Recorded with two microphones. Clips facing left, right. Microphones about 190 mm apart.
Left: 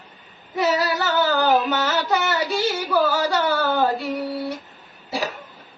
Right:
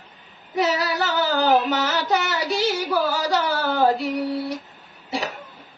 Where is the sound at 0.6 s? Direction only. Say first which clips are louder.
Left 1 dB; centre (ahead or behind).